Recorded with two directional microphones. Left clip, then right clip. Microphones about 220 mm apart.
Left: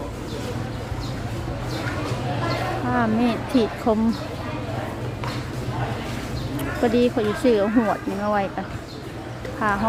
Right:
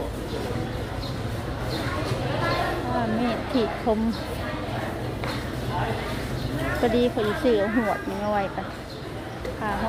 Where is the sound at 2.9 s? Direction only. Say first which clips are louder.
Left 6 dB; 20° left (ahead or behind).